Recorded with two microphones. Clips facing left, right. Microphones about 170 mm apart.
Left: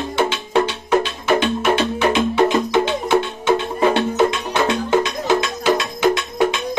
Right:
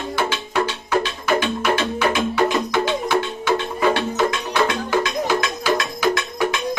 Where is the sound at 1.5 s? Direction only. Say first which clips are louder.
Left 3 dB; 25° left (ahead or behind).